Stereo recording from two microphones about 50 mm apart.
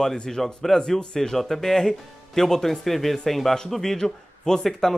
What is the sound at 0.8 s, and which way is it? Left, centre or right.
Speech, centre.